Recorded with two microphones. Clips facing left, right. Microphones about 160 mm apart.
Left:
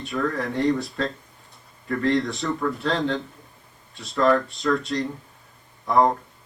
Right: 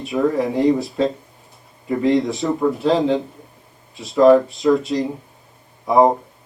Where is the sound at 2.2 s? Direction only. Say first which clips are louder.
Right 6 dB; centre (ahead or behind).